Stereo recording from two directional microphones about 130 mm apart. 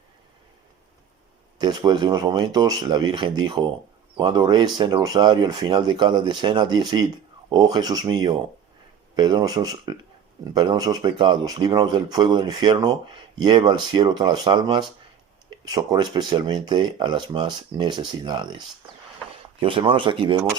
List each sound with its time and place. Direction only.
1.5 s speech: 35° right (ahead or behind)